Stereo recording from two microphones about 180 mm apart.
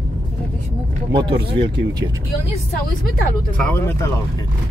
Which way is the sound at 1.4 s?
30° right (ahead or behind).